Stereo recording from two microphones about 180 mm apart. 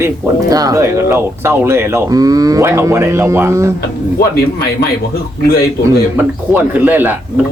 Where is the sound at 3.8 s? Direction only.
60° left (ahead or behind).